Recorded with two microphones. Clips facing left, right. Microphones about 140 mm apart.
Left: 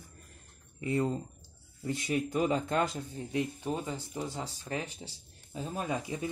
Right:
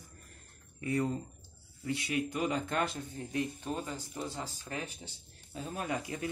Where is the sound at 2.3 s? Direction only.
30° left (ahead or behind).